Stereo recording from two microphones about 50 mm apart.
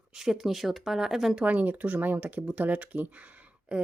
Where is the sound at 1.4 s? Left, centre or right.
Right.